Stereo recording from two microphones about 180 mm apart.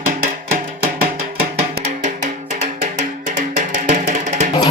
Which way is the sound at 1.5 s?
40° right (ahead or behind).